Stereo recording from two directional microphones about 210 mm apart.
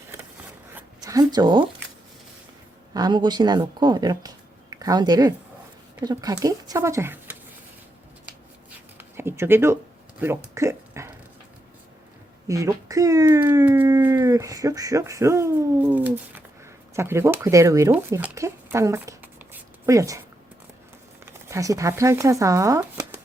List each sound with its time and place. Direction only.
0.7 s a sound: 15° right (ahead or behind)
2.9 s speech: 20° right (ahead or behind)
9.0 s speech: 10° right (ahead or behind)
10.2 s a sound: 10° right (ahead or behind)
12.5 s speech: 15° right (ahead or behind)
21.2 s speech: 15° right (ahead or behind)